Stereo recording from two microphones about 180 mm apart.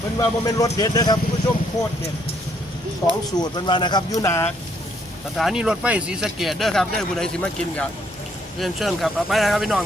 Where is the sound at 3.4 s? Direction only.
25° left (ahead or behind).